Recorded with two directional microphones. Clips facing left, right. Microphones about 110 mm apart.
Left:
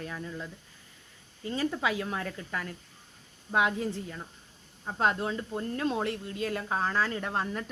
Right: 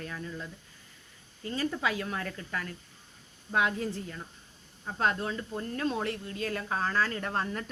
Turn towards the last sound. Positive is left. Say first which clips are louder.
# left 1 dB
turn(degrees=10)  # may be behind; listen again after turning